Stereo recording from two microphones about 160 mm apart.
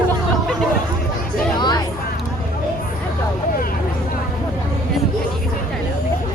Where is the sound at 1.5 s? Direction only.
25° left (ahead or behind).